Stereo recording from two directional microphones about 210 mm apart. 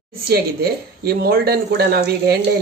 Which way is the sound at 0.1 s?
50° right (ahead or behind).